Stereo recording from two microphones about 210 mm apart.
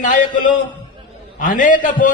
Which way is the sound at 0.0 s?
40° left (ahead or behind).